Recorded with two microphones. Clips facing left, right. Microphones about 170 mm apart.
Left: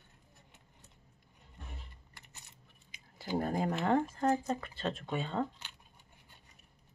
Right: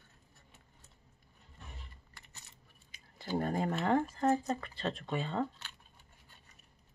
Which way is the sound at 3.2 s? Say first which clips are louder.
Even; 5° left (ahead or behind).